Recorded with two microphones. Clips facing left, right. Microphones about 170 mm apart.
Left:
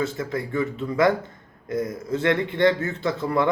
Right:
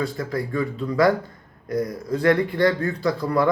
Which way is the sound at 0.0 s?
25° left (ahead or behind).